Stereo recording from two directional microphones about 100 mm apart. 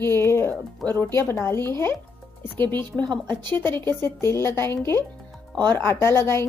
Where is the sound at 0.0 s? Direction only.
25° left (ahead or behind).